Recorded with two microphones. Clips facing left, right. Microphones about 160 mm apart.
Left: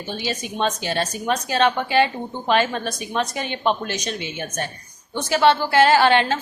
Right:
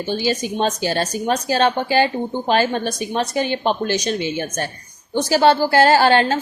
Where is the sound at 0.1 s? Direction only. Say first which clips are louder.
Right 6 dB; 35° right (ahead or behind).